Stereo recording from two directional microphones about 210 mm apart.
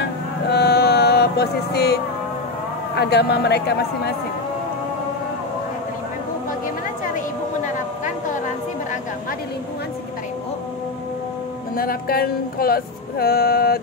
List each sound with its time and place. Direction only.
0.5 s music: 50° left (ahead or behind)
3.0 s speech: 50° left (ahead or behind)
7.6 s a sound: 35° left (ahead or behind)
11.7 s speech: 45° left (ahead or behind)